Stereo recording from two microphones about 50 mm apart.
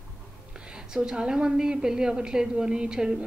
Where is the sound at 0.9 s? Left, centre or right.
Centre.